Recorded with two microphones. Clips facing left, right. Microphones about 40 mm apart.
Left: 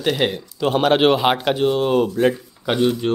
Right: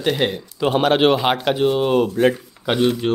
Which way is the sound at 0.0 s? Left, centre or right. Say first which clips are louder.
Even; centre.